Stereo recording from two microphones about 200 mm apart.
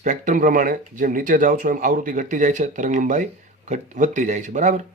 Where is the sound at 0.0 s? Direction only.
40° right (ahead or behind).